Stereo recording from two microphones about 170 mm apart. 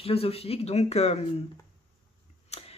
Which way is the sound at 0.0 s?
35° left (ahead or behind).